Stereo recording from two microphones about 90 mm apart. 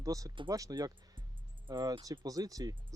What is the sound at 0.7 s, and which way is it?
Speech, 55° right (ahead or behind).